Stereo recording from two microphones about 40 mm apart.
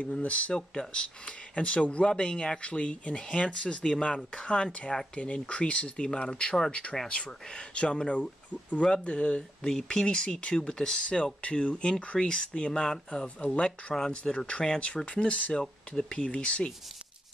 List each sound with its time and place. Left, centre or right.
0.2 s speech: left
0.6 s speech: left
13.9 s speech: centre
14.3 s speech: left